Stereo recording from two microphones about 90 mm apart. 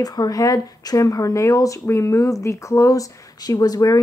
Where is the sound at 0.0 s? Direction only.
45° left (ahead or behind).